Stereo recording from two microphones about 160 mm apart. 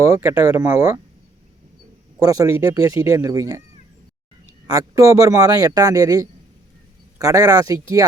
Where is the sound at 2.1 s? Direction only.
20° right (ahead or behind).